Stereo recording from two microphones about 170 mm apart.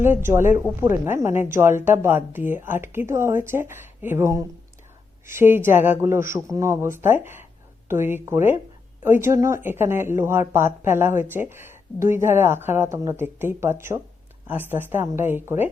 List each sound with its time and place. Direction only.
0.0 s speech: 15° right (ahead or behind)